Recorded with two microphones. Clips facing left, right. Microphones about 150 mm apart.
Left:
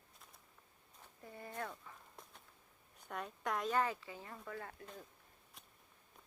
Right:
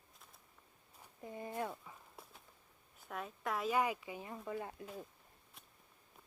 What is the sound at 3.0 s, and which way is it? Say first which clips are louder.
Speech: even; centre (ahead or behind).